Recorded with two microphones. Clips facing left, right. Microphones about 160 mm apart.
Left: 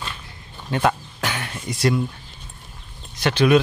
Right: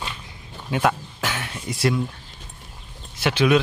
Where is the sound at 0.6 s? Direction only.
5° right (ahead or behind).